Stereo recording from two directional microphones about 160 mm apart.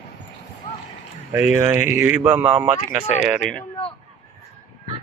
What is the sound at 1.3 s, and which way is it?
Speech, 15° right (ahead or behind).